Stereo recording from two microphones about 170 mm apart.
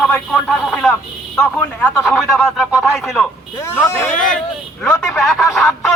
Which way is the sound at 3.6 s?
15° left (ahead or behind).